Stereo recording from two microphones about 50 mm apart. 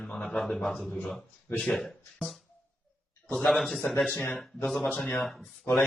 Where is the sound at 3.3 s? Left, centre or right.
Centre.